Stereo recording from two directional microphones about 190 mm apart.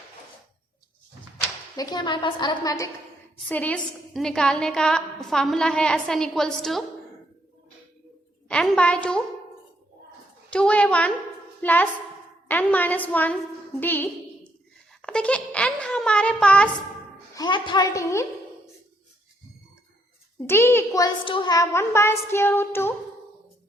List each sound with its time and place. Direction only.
1.4 s a woman's voice: 20° left (ahead or behind)
3.5 s a woman's voice: 5° left (ahead or behind)
8.4 s a woman's voice: 5° left (ahead or behind)
10.5 s a woman's voice: 5° left (ahead or behind)
17.3 s a woman's voice: 25° left (ahead or behind)
20.5 s a woman's voice: 10° left (ahead or behind)